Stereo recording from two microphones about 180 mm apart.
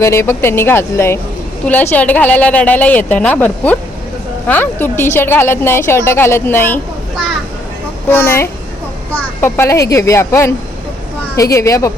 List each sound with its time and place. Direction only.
0.0 s a woman's voice: 15° left (ahead or behind)
8.1 s a woman's voice: 15° left (ahead or behind)